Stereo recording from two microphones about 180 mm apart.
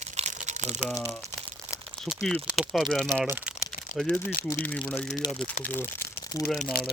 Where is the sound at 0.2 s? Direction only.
40° right (ahead or behind).